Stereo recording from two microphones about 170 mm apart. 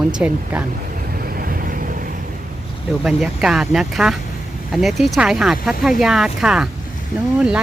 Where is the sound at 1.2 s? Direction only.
60° right (ahead or behind).